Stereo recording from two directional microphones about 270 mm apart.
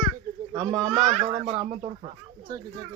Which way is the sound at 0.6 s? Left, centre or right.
Centre.